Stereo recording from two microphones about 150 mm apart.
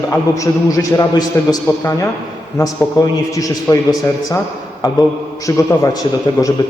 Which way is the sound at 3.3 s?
20° left (ahead or behind).